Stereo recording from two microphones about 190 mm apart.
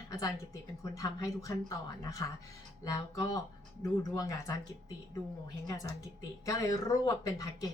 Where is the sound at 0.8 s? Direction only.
15° left (ahead or behind).